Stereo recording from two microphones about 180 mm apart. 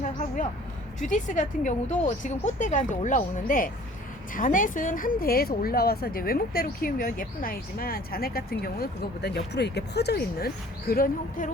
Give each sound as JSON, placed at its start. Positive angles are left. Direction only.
{"t": 0.9, "sound": "a woman's voice", "side_deg": 45}